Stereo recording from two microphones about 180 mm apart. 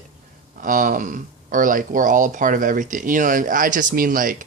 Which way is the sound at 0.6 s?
50° right (ahead or behind).